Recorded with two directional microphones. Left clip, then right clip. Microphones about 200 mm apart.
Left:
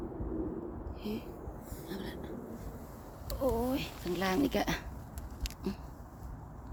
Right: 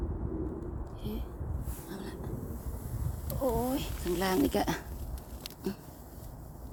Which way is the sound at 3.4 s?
10° right (ahead or behind).